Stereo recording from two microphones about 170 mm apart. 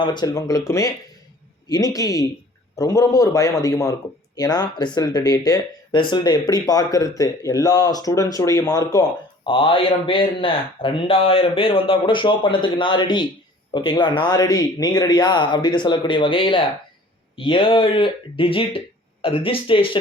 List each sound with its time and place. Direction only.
0.0 s speech: 25° left (ahead or behind)